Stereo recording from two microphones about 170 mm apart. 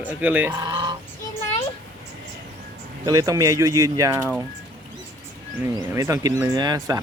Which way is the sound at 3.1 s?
20° right (ahead or behind).